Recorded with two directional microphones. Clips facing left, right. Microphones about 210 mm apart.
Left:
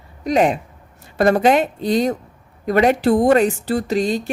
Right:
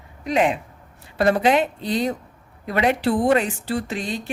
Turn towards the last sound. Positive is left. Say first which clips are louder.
# left 7 dB
turn(degrees=40)  # may be behind; listen again after turning